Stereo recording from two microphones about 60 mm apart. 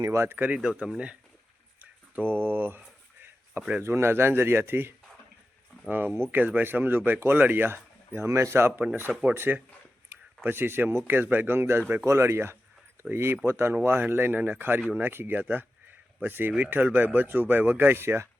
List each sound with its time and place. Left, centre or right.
0.0 s speech: right
0.3 s speech: right
0.6 s speech: centre
1.8 s speech: right
3.6 s speech: right
3.8 s speech: right
9.0 s speech: right
12.0 s speech: right